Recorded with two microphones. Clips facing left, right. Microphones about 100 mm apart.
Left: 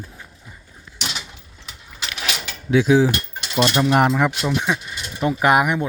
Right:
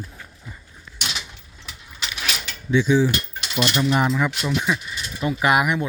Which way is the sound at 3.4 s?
30° left (ahead or behind).